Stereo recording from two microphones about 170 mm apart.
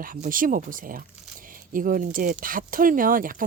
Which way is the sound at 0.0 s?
55° right (ahead or behind).